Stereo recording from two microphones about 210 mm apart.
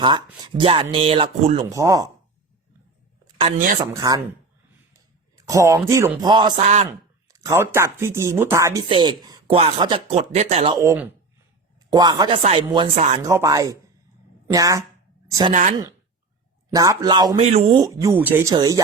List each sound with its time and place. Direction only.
0.0 s speech: 20° right (ahead or behind)
3.2 s a sound: 25° right (ahead or behind)
3.8 s speech: 15° right (ahead or behind)
5.5 s speech: 15° right (ahead or behind)
6.6 s speech: 35° right (ahead or behind)
7.3 s speech: 15° right (ahead or behind)
10.8 s speech: 10° right (ahead or behind)
12.4 s speech: 30° right (ahead or behind)
13.2 s a woman's voice: 15° right (ahead or behind)
16.7 s speech: 15° right (ahead or behind)